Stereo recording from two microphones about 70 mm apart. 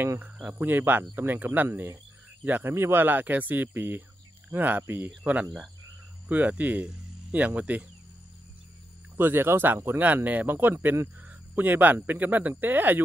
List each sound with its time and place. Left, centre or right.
0.2 s speech: right
9.1 s speech: right